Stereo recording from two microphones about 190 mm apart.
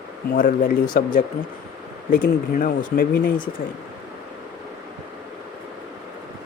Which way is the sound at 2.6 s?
50° left (ahead or behind).